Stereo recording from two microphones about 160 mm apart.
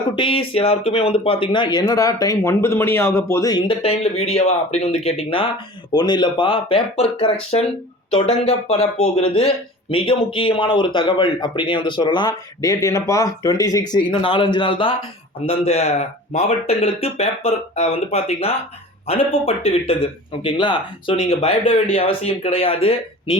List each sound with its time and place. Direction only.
0.2 s speech: 35° left (ahead or behind)
3.7 s speech: 40° left (ahead or behind)
5.9 s speech: 25° left (ahead or behind)